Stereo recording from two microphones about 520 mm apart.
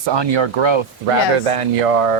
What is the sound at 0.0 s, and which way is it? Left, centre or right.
Speech, right.